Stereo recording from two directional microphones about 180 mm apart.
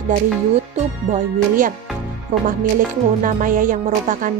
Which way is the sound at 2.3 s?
40° right (ahead or behind).